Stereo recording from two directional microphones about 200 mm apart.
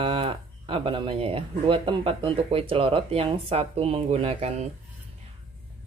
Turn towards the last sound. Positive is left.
turn(degrees=-30)  # may be behind; listen again after turning